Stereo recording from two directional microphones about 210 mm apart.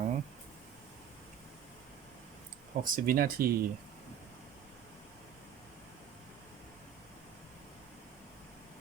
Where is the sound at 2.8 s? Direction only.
45° right (ahead or behind).